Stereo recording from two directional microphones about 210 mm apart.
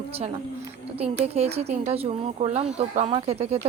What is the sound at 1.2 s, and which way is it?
Speech, 30° right (ahead or behind).